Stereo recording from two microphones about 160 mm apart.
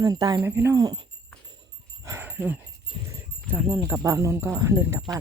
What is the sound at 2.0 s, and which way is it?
Dog, 15° right (ahead or behind).